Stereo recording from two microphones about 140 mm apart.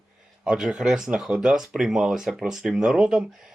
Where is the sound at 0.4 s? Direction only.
5° right (ahead or behind).